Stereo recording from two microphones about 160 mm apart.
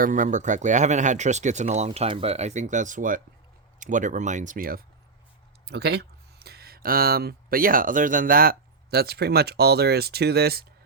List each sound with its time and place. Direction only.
0.0 s speech: 55° right (ahead or behind)
5.6 s speech: 90° right